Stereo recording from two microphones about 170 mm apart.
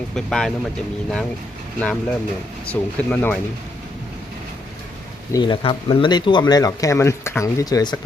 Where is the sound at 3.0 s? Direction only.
10° left (ahead or behind).